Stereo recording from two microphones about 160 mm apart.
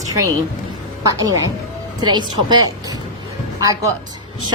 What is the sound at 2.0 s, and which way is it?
A woman's voice, 25° right (ahead or behind).